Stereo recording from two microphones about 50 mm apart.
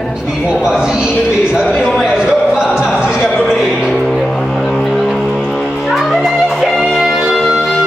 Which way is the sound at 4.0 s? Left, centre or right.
Centre.